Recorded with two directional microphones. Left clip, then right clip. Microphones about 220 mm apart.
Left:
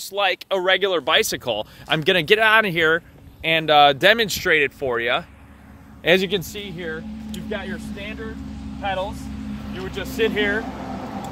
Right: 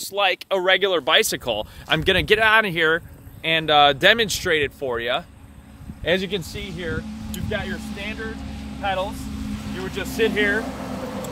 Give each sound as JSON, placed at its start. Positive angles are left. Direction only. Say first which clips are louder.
{"t": 0.0, "sound": "speech", "louder": "even", "side_deg": 0}
{"t": 6.0, "sound": "speech", "louder": "left 4 dB", "side_deg": 50}
{"t": 7.3, "sound": "speech", "louder": "right 2 dB", "side_deg": 5}
{"t": 10.6, "sound": "vehicle", "louder": "right 1 dB", "side_deg": -50}